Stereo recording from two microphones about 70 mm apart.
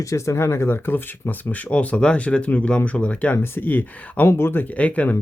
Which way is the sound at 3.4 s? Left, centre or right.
Left.